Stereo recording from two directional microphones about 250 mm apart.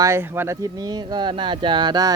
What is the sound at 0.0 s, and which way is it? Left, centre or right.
Speech, centre.